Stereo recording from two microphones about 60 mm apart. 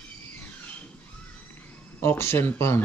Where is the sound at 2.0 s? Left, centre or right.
Left.